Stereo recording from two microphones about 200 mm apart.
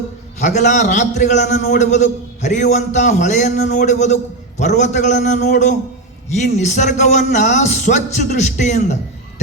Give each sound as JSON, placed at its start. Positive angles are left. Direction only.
{"t": 0.3, "sound": "a man's voice", "side_deg": 35}